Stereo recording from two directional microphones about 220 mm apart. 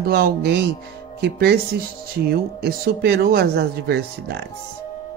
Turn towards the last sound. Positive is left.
turn(degrees=-50)  # may be behind; listen again after turning